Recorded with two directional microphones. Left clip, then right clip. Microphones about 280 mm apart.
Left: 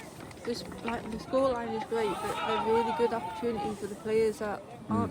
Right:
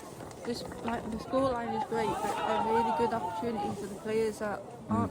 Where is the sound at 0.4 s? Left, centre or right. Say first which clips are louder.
Left 1 dB; centre.